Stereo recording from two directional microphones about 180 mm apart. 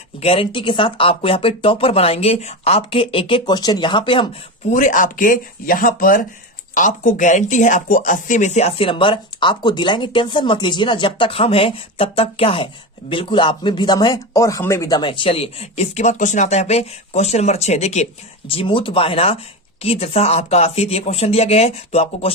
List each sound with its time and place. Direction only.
0.2 s speech: 30° left (ahead or behind)
4.7 s speech: 45° left (ahead or behind)